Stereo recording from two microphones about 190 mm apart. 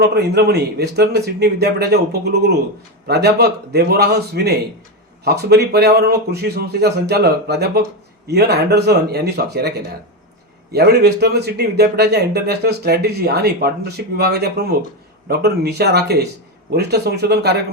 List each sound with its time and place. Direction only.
0.0 s speech: 60° right (ahead or behind)